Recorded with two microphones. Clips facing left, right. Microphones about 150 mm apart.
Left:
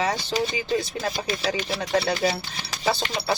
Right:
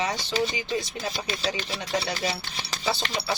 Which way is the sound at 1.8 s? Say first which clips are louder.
Left 7 dB; 35° left (ahead or behind).